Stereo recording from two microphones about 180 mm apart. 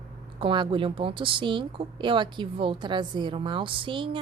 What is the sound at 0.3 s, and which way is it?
A woman's voice, 25° right (ahead or behind).